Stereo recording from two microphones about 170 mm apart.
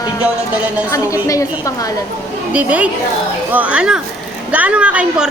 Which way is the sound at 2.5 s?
10° right (ahead or behind).